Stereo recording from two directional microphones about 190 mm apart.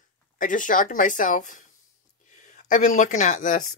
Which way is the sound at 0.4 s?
45° left (ahead or behind).